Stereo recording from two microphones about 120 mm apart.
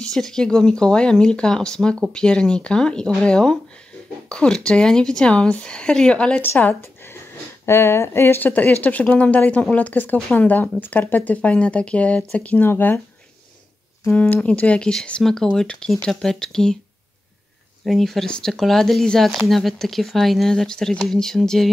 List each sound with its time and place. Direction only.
0.0 s speech: 5° left (ahead or behind)
6.8 s a sound: 20° left (ahead or behind)
7.6 s speech: 20° left (ahead or behind)
14.1 s speech: 10° left (ahead or behind)
17.8 s speech: centre (ahead or behind)